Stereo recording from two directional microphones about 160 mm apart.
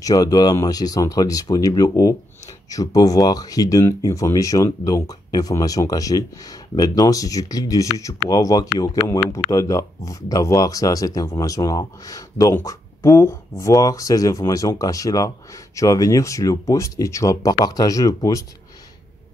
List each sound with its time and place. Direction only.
0.0 s speech: 25° left (ahead or behind)